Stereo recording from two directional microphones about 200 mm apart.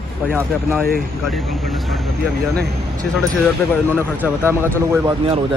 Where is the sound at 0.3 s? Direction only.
10° right (ahead or behind).